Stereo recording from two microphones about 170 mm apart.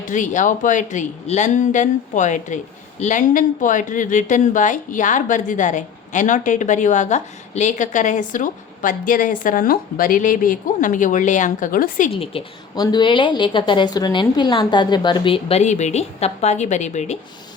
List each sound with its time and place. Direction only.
0.1 s a woman's voice: 45° left (ahead or behind)
12.1 s a woman's voice: 30° left (ahead or behind)